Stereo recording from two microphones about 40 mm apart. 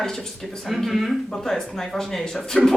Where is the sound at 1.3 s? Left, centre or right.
Centre.